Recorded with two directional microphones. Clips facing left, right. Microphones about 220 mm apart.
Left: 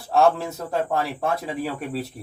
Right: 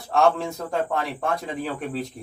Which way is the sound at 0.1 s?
5° left (ahead or behind).